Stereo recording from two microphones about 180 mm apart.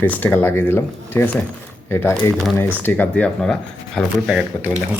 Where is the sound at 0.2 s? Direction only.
10° left (ahead or behind).